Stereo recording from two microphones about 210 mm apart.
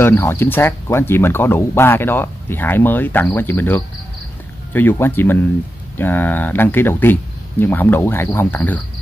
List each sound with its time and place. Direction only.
0.0 s speech: 10° left (ahead or behind)